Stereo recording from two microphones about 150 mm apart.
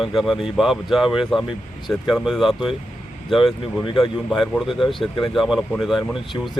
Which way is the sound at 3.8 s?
35° left (ahead or behind).